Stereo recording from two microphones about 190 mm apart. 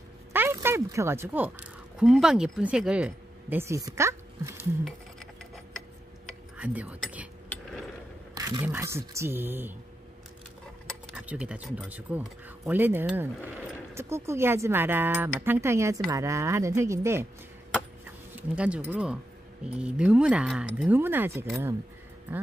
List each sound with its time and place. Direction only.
0.3 s speech: 10° right (ahead or behind)
6.2 s a sound: 5° right (ahead or behind)
7.4 s mechanisms: 10° left (ahead or behind)
8.4 s a sound: 20° right (ahead or behind)
8.6 s speech: 10° right (ahead or behind)
11.1 s speech: 5° right (ahead or behind)
18.3 s speech: 5° right (ahead or behind)